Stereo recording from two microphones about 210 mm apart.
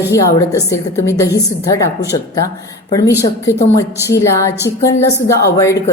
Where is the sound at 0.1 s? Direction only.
15° left (ahead or behind).